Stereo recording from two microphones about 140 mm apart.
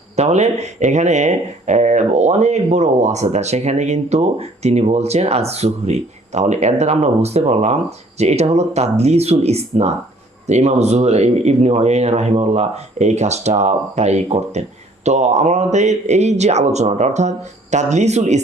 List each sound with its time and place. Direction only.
0.2 s speech: 55° right (ahead or behind)